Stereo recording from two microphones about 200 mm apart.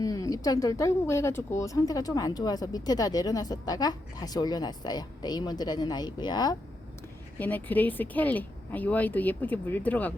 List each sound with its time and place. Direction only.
0.0 s speech: 15° left (ahead or behind)
7.3 s a woman's voice: 10° left (ahead or behind)